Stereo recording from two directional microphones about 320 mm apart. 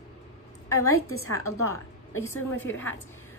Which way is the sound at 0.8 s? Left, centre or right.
Left.